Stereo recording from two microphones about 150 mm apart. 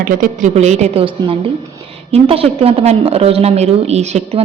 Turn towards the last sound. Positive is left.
turn(degrees=-45)  # may be behind; listen again after turning